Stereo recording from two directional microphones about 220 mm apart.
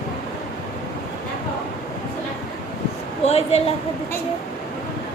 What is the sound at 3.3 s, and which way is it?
Speech, 30° left (ahead or behind).